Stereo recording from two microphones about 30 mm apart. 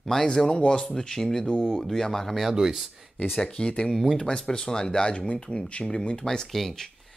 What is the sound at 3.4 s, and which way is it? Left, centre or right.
Speech, left.